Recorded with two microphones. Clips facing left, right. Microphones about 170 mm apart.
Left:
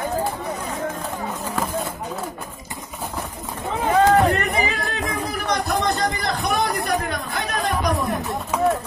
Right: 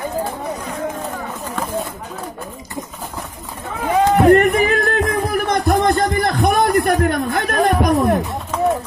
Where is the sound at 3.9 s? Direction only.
15° right (ahead or behind).